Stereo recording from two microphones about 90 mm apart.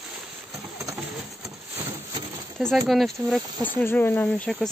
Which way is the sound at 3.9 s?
20° left (ahead or behind).